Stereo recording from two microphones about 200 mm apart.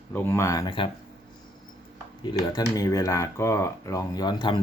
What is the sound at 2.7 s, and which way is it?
Speech, 15° left (ahead or behind).